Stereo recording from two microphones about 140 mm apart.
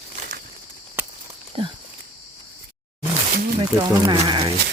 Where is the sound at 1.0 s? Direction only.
15° right (ahead or behind).